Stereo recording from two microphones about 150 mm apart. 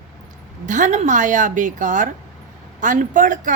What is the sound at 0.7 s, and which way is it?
A woman's voice, 55° right (ahead or behind).